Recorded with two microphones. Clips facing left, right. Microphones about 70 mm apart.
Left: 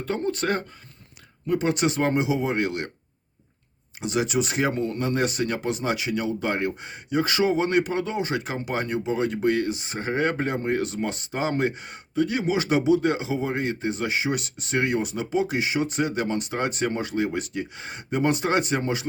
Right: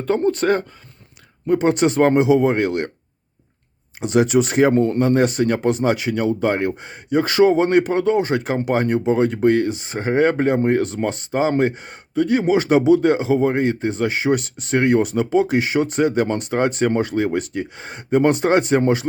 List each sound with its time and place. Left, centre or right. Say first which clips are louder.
0.0 s speech: right 8 dB; right
4.0 s speech: right 8 dB; right